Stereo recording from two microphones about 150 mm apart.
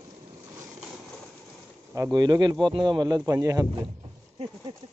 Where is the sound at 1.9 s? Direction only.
25° right (ahead or behind).